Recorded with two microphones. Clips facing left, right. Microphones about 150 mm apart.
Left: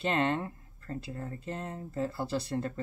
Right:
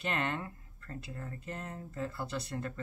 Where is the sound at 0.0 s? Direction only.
30° left (ahead or behind).